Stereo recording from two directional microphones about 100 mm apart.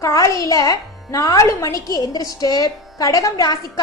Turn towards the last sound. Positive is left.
turn(degrees=40)  # may be behind; listen again after turning